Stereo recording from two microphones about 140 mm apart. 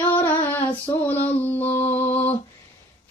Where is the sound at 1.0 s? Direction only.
10° left (ahead or behind).